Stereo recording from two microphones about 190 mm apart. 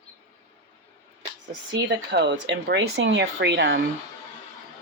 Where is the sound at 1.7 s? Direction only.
60° right (ahead or behind).